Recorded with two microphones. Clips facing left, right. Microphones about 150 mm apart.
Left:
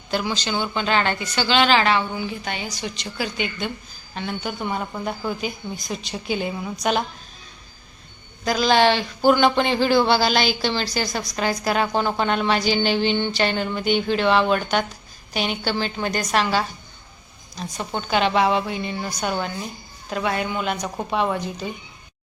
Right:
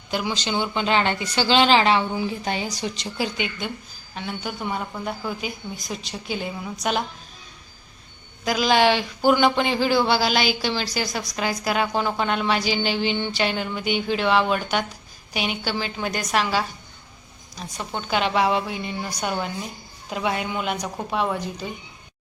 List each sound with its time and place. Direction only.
0.1 s speech: 15° right (ahead or behind)
4.1 s speech: 5° right (ahead or behind)
8.4 s speech: 10° right (ahead or behind)
17.7 s a woman's voice: centre (ahead or behind)